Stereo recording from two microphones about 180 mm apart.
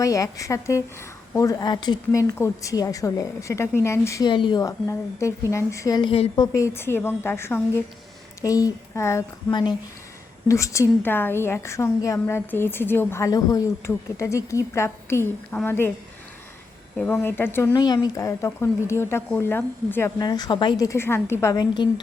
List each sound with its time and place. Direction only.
0.0 s a woman's voice: 20° left (ahead or behind)
6.3 s a woman's voice: 20° left (ahead or behind)
17.0 s a woman's voice: 10° left (ahead or behind)
17.7 s a woman's voice: 25° left (ahead or behind)